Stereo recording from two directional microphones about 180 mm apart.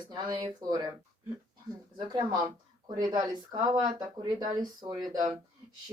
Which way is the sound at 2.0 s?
25° right (ahead or behind).